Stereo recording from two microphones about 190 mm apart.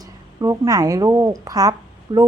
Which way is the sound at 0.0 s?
20° right (ahead or behind).